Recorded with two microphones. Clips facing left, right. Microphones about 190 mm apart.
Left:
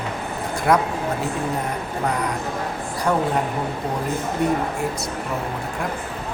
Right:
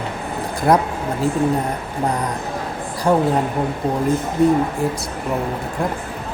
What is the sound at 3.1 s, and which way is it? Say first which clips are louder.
Speech: right 5 dB; 30° right (ahead or behind).